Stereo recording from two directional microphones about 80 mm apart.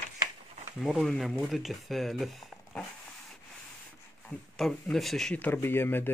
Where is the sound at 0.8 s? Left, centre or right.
Centre.